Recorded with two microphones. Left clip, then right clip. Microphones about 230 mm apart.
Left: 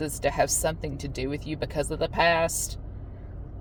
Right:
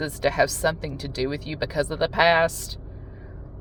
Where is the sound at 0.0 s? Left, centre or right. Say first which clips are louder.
Right 3 dB; right.